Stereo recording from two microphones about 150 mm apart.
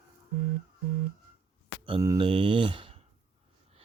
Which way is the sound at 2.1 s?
35° right (ahead or behind).